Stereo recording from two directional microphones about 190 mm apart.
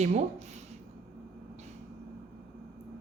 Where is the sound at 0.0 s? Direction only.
35° right (ahead or behind).